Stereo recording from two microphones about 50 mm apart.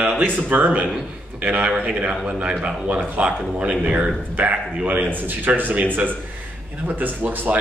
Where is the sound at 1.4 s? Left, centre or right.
Right.